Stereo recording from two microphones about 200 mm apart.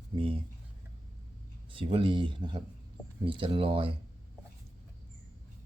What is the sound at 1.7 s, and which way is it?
Speech, 25° right (ahead or behind).